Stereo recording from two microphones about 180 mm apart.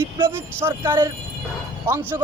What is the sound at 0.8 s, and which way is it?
Speech, 25° right (ahead or behind).